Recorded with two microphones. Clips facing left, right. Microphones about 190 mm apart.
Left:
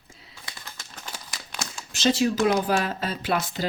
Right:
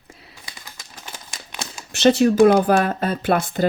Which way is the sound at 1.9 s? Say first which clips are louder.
Right 8 dB; 60° right (ahead or behind).